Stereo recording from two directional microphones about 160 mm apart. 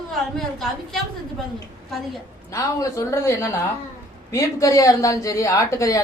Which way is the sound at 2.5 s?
20° left (ahead or behind).